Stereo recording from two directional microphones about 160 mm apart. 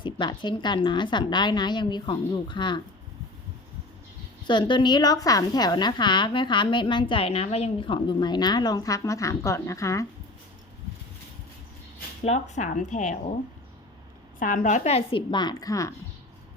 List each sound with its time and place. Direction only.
0.0 s a woman's voice: 30° left (ahead or behind)
4.4 s a woman's voice: 30° left (ahead or behind)
12.2 s speech: 45° left (ahead or behind)
14.3 s a woman's voice: 55° left (ahead or behind); by 16.0 s 20° left (ahead or behind)